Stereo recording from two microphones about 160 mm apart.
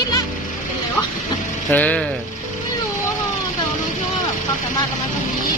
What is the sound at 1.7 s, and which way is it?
Speech, 10° left (ahead or behind).